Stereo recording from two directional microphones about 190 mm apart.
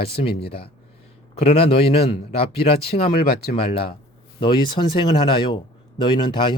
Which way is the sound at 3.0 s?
55° left (ahead or behind).